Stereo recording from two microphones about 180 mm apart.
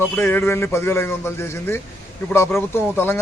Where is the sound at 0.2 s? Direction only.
10° left (ahead or behind).